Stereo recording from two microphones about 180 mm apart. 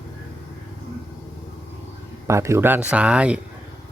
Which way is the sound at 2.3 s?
15° right (ahead or behind).